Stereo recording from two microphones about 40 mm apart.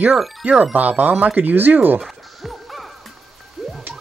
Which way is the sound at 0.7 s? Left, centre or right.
Right.